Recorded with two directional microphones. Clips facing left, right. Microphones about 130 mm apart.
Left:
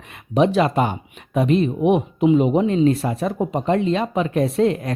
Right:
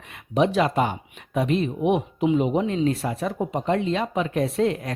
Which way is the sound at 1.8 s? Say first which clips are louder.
Left 4 dB; 55° left (ahead or behind).